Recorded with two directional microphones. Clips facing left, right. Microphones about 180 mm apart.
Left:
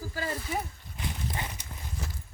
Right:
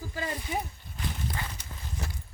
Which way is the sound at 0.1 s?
20° right (ahead or behind).